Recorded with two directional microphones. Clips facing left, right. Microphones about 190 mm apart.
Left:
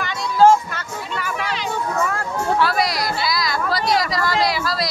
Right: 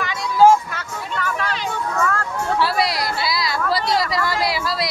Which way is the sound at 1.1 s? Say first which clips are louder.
Right 2 dB; 10° left (ahead or behind).